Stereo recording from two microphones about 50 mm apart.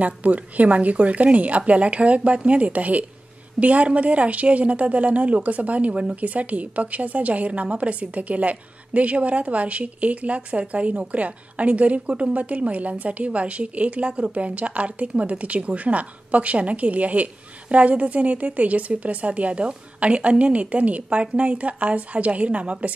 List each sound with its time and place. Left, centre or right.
0.0 s a woman's voice: right